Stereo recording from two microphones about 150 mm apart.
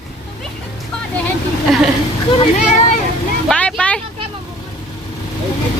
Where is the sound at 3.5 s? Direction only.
5° left (ahead or behind).